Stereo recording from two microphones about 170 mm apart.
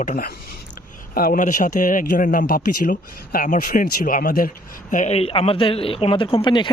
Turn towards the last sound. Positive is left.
turn(degrees=30)  # may be behind; listen again after turning